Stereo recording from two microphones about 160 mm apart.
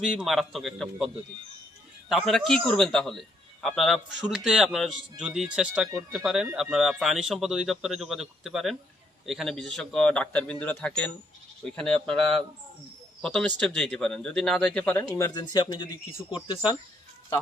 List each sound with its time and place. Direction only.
0.0 s a man's voice: centre (ahead or behind)
15.4 s speech: 30° left (ahead or behind)